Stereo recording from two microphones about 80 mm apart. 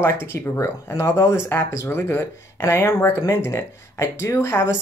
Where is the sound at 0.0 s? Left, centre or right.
Left.